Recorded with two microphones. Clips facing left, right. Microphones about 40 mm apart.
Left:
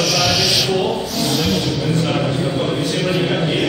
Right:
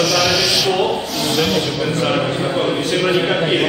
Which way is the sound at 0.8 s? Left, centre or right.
Centre.